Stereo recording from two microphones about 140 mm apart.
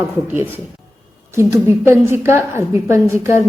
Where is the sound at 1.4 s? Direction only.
20° right (ahead or behind).